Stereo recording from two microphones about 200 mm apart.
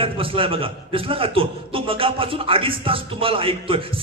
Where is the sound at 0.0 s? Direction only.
25° right (ahead or behind).